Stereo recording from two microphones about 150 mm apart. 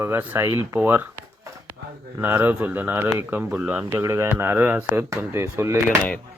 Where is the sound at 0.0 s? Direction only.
15° right (ahead or behind).